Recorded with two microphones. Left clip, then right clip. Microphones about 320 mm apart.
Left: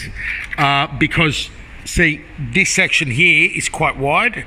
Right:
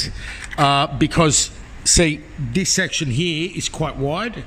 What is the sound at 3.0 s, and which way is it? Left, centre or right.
Speech, centre.